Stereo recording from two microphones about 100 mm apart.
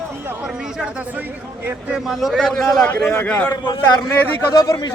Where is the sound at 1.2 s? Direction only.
20° right (ahead or behind).